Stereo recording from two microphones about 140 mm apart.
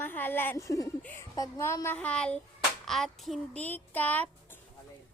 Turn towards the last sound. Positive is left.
turn(degrees=10)  # may be behind; listen again after turning